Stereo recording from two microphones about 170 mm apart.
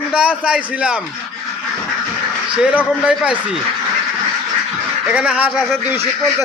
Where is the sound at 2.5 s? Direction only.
5° right (ahead or behind).